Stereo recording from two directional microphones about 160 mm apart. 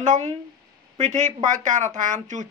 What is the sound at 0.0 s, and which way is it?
Speech, 50° right (ahead or behind).